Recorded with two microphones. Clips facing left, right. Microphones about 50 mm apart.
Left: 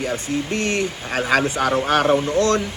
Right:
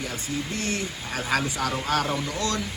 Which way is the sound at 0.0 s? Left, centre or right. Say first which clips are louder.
Left 7 dB; left.